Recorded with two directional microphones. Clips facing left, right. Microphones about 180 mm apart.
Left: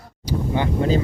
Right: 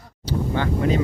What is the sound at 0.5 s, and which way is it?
Speech, 15° left (ahead or behind).